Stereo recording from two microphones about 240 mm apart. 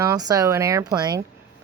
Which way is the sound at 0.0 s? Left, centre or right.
Centre.